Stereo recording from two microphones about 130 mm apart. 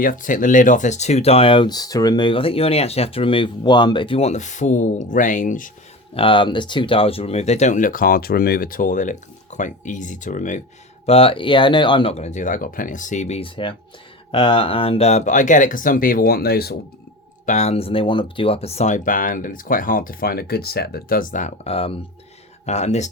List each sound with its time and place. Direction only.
0.0 s speech: 90° left; by 4.3 s 40° left (ahead or behind)
4.3 s speech: 65° left (ahead or behind); by 5.7 s 90° left
6.1 s speech: 40° left (ahead or behind); by 10.6 s 75° left (ahead or behind)
11.0 s speech: 50° left (ahead or behind)
12.1 s speech: 60° left (ahead or behind)
14.3 s speech: 45° left (ahead or behind); by 16.2 s 90° left
17.4 s speech: 65° left (ahead or behind); by 22.0 s 45° left (ahead or behind)
22.6 s speech: 60° left (ahead or behind)